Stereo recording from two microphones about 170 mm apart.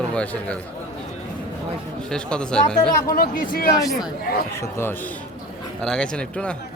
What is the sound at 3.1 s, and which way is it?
Speech, 60° left (ahead or behind).